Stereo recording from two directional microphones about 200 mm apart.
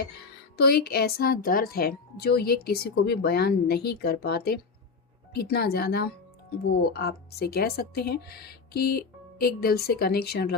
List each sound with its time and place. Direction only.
0.5 s a woman's voice: 50° left (ahead or behind)